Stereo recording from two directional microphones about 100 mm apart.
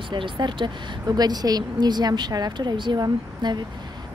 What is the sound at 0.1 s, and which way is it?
Speech, 55° right (ahead or behind).